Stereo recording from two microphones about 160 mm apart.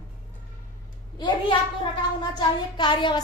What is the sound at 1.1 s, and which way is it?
A child's voice, 30° left (ahead or behind).